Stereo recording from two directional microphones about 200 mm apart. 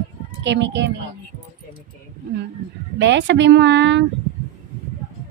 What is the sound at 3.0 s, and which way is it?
A woman's voice, 60° right (ahead or behind).